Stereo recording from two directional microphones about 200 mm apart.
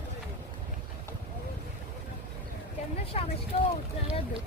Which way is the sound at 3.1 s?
35° left (ahead or behind).